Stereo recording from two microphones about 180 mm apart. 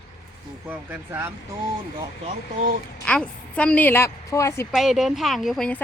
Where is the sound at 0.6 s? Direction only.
10° right (ahead or behind).